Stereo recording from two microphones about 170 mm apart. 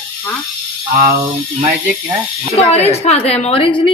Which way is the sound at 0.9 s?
60° right (ahead or behind).